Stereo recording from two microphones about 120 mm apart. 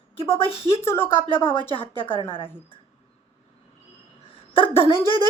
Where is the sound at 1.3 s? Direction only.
45° left (ahead or behind).